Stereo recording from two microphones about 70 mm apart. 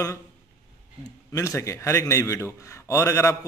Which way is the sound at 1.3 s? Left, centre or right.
Left.